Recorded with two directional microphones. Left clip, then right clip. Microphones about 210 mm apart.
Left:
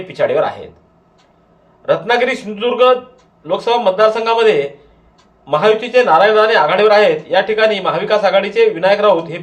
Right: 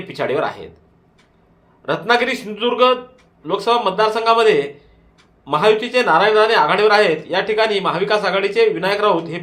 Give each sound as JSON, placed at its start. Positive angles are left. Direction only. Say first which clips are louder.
{"t": 0.1, "sound": "a man's voice", "louder": "left 5 dB", "side_deg": -30}
{"t": 1.8, "sound": "a man's voice", "louder": "left 3 dB", "side_deg": -35}